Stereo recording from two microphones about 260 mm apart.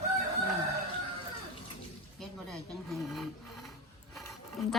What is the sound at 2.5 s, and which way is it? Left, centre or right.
Speech, centre.